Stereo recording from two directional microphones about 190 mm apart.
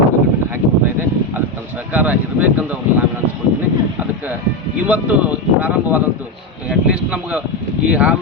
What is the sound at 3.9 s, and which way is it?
Speech, 10° right (ahead or behind).